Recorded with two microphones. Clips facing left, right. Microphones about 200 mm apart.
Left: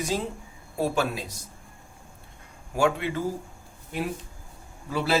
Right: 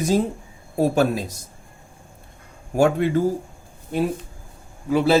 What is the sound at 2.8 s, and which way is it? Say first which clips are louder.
Speech: right 7 dB; 45° right (ahead or behind).